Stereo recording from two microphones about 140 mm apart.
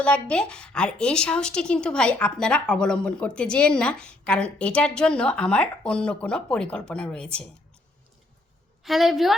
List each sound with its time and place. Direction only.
0.0 s speech: 5° left (ahead or behind)
8.8 s a woman's voice: centre (ahead or behind)